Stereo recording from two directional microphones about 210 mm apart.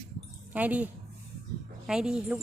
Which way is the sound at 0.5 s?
5° right (ahead or behind).